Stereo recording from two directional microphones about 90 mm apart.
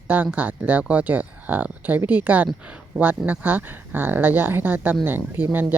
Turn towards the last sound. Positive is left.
turn(degrees=-20)  # may be behind; listen again after turning